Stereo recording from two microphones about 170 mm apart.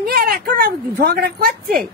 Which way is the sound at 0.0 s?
60° right (ahead or behind).